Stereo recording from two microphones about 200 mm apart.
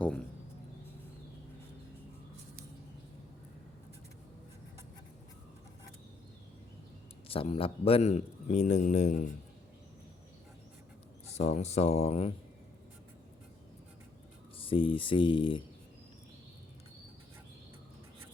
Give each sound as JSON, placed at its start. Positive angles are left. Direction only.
{"t": 7.3, "sound": "a man's voice", "side_deg": 30}
{"t": 11.3, "sound": "a man's voice", "side_deg": 35}
{"t": 14.6, "sound": "speech", "side_deg": 25}